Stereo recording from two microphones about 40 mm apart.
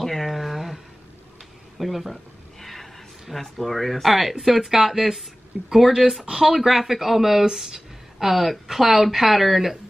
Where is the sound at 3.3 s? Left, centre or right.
Centre.